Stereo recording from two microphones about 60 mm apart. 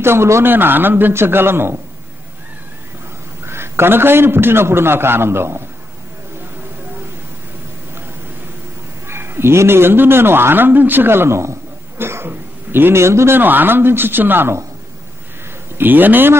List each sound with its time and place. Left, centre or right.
0.0 s a man's voice: right
3.4 s a man's voice: right
9.0 s a man's voice: right
13.4 s a man's voice: right
15.8 s a man's voice: right